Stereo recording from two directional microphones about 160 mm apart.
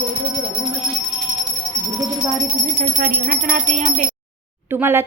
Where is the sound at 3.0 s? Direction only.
55° right (ahead or behind).